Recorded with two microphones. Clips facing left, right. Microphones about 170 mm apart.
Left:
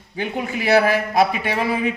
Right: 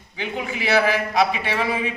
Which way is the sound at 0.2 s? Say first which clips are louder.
Left 3 dB; 45° left (ahead or behind).